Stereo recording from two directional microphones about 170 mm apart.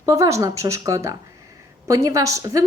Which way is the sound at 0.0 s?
20° right (ahead or behind).